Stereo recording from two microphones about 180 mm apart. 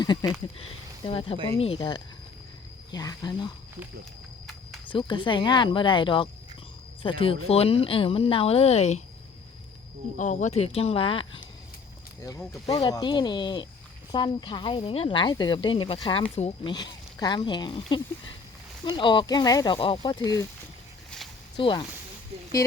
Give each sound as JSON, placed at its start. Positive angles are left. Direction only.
{"t": 0.0, "sound": "a sound", "side_deg": 25}
{"t": 1.0, "sound": "speech", "side_deg": 30}
{"t": 4.9, "sound": "speech", "side_deg": 25}
{"t": 10.2, "sound": "speech", "side_deg": 40}
{"t": 12.2, "sound": "speech", "side_deg": 20}
{"t": 12.6, "sound": "speech", "side_deg": 35}
{"t": 16.7, "sound": "speech", "side_deg": 25}
{"t": 21.5, "sound": "speech", "side_deg": 25}